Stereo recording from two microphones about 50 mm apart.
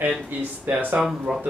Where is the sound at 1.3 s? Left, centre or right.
Centre.